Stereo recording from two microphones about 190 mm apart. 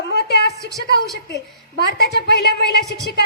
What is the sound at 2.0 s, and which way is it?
Speech, 60° left (ahead or behind).